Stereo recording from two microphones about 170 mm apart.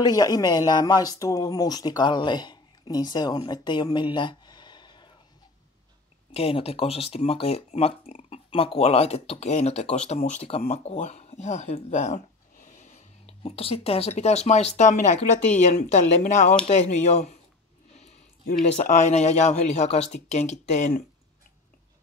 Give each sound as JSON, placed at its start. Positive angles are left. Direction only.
{"t": 0.0, "sound": "speech", "side_deg": 20}
{"t": 6.3, "sound": "speech", "side_deg": 35}
{"t": 18.5, "sound": "speech", "side_deg": 50}